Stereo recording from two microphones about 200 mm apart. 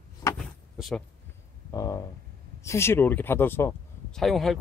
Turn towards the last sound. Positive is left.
turn(degrees=0)  # may be behind; listen again after turning